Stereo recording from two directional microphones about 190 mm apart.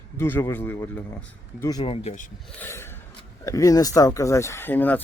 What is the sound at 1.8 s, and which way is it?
Speech, 30° left (ahead or behind).